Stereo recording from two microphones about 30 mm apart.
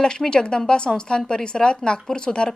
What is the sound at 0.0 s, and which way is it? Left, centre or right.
A woman's voice, left.